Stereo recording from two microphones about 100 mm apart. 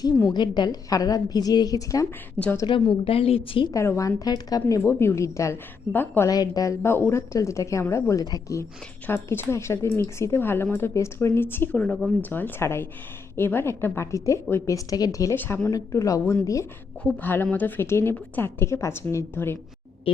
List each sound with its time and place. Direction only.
0.3 s a woman's voice: 45° left (ahead or behind)
2.9 s a woman's voice: 70° left (ahead or behind)
3.7 s a woman's voice: 30° left (ahead or behind)
4.8 s a woman's voice: 25° left (ahead or behind)
6.2 s a woman's voice: 40° left (ahead or behind)
9.0 s a woman's voice: 20° left (ahead or behind); by 15.4 s 35° left (ahead or behind)
15.4 s a woman's voice: 25° left (ahead or behind)
15.7 s a woman's voice: 35° left (ahead or behind)
17.2 s a woman's voice: 20° left (ahead or behind)
20.1 s a woman's voice: 65° left (ahead or behind)